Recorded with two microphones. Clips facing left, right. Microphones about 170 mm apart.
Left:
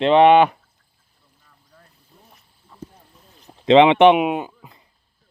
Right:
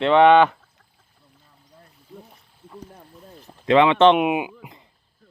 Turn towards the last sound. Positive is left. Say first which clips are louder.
# right 4 dB
turn(degrees=-20)  # may be behind; listen again after turning